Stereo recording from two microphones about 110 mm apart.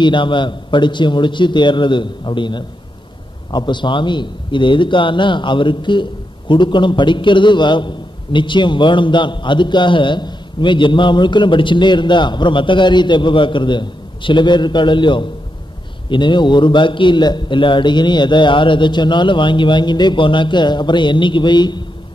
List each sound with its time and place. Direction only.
0.0 s speech: 45° left (ahead or behind)